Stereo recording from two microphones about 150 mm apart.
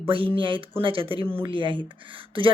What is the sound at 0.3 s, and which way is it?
Speech, 35° right (ahead or behind).